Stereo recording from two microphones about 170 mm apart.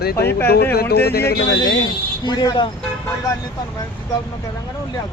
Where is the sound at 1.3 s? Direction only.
80° left.